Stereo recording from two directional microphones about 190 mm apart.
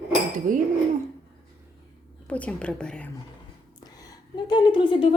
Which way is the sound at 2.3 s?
5° left (ahead or behind).